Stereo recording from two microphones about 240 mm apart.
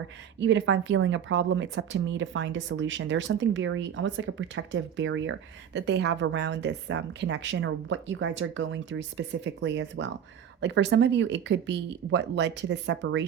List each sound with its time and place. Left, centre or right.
0.3 s speech: right